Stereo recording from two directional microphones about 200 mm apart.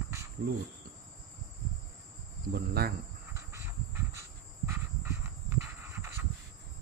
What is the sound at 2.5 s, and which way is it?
Cricket, 50° right (ahead or behind).